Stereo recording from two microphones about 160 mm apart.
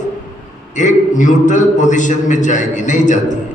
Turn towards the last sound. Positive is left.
turn(degrees=50)  # may be behind; listen again after turning